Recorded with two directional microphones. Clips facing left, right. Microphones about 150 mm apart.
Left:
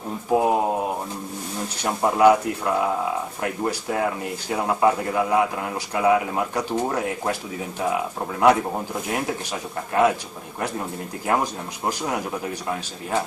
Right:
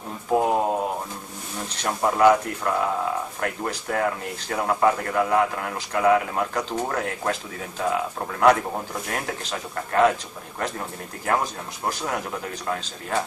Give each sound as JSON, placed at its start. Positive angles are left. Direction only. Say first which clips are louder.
{"t": 0.3, "sound": "speech", "louder": "left 1 dB", "side_deg": 10}
{"t": 1.8, "sound": "speech", "louder": "left 1 dB", "side_deg": 10}
{"t": 11.2, "sound": "speech", "louder": "left 1 dB", "side_deg": 15}